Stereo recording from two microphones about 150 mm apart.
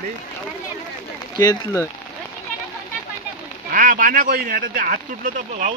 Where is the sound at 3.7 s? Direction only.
70° right (ahead or behind); by 5.8 s 55° right (ahead or behind).